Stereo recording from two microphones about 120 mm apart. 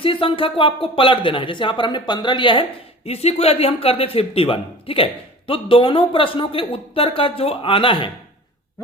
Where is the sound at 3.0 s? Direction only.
60° left (ahead or behind).